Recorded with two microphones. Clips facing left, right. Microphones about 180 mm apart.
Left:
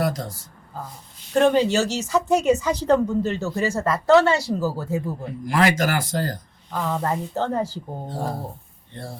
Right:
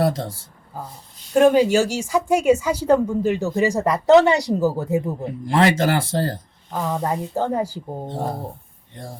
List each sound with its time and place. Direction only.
0.0 s speech: 30° right (ahead or behind)
1.3 s speech: 10° right (ahead or behind); by 6.4 s 30° right (ahead or behind)
6.7 s speech: 15° right (ahead or behind)
8.0 s speech: 25° right (ahead or behind)